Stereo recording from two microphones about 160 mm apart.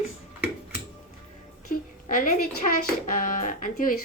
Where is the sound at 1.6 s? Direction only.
60° left (ahead or behind).